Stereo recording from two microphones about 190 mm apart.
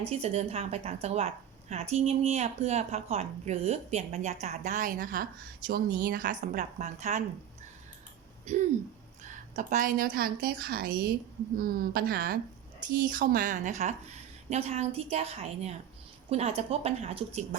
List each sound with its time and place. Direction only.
0.1 s speech: 35° right (ahead or behind)
8.5 s speech: 35° right (ahead or behind)